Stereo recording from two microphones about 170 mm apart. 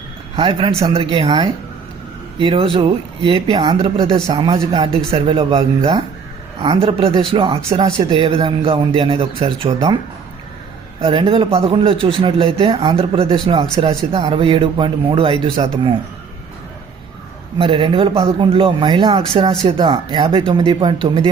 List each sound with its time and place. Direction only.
0.3 s speech: 30° right (ahead or behind)
11.0 s speech: 30° right (ahead or behind)
17.6 s speech: 30° right (ahead or behind)